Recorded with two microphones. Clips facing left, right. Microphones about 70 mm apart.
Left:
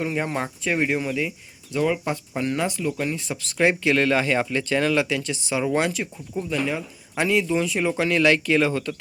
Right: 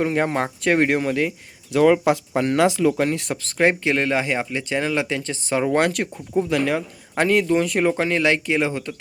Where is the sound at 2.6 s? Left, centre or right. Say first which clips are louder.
Right 8 dB; right.